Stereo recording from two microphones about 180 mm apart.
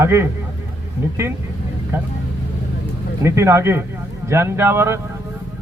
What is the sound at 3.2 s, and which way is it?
A man's voice, 15° right (ahead or behind).